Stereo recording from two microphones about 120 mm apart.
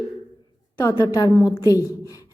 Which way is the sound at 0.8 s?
20° left (ahead or behind).